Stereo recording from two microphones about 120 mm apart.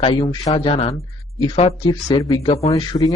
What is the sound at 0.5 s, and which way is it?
A man's voice, 50° left (ahead or behind).